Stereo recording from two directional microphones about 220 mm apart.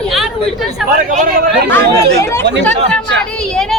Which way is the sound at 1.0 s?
35° right (ahead or behind).